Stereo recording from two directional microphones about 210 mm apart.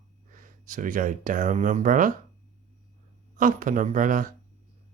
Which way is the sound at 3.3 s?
40° right (ahead or behind).